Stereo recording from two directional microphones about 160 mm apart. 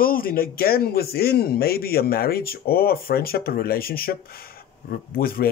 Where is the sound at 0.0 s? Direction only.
65° left (ahead or behind).